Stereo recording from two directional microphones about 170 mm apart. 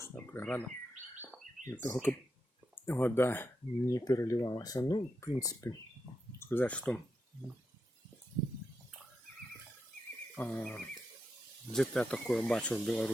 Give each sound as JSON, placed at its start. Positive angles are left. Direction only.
{"t": 1.6, "sound": "speech", "side_deg": 15}
{"t": 10.3, "sound": "speech", "side_deg": 10}